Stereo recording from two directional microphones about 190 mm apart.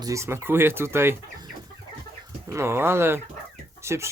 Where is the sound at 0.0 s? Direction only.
15° right (ahead or behind).